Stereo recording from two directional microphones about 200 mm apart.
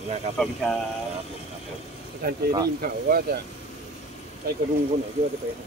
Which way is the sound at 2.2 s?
45° right (ahead or behind).